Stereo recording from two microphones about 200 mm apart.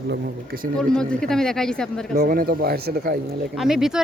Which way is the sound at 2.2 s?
45° right (ahead or behind).